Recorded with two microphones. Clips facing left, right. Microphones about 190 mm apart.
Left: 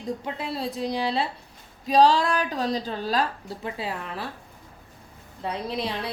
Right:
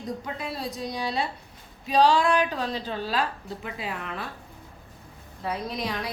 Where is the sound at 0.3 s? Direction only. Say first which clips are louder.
Left 3 dB; 30° left (ahead or behind).